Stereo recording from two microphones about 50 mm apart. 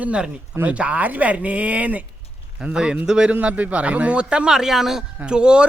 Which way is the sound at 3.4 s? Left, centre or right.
Right.